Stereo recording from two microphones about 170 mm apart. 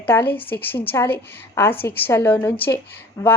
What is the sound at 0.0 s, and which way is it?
A woman's voice, 10° left (ahead or behind).